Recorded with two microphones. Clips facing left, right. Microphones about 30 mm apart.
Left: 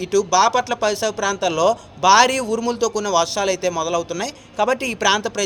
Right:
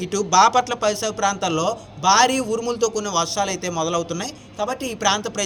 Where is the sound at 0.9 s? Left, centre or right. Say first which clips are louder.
Left 1 dB; left.